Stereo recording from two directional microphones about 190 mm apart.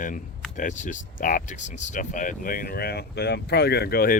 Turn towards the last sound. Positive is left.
turn(degrees=50)  # may be behind; listen again after turning